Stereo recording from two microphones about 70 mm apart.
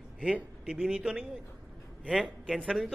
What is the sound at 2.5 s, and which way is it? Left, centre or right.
Speech, centre.